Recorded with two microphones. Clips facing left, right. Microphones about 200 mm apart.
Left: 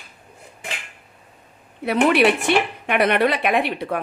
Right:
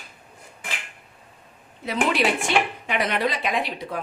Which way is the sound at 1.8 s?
60° left (ahead or behind).